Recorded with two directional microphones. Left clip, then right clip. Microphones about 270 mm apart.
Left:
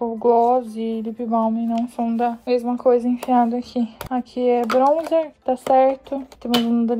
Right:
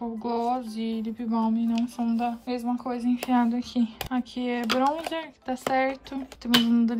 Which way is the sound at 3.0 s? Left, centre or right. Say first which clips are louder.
Left 7 dB; right.